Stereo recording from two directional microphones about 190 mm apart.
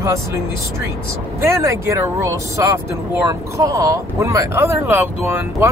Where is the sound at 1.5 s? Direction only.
15° right (ahead or behind).